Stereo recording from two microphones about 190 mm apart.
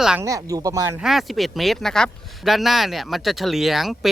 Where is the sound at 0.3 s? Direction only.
15° right (ahead or behind).